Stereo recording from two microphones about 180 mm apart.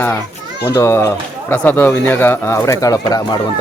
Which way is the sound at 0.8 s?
15° left (ahead or behind).